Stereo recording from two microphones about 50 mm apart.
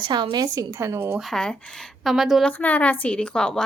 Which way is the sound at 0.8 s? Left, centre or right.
Right.